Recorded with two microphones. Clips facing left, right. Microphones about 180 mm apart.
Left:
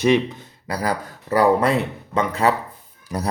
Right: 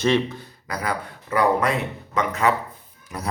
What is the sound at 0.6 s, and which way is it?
Speech, 35° left (ahead or behind).